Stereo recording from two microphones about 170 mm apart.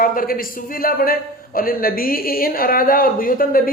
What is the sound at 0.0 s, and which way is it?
A man's voice, 55° left (ahead or behind).